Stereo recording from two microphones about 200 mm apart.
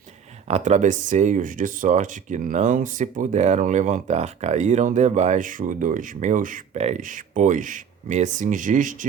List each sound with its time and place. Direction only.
0.4 s speech: 35° right (ahead or behind)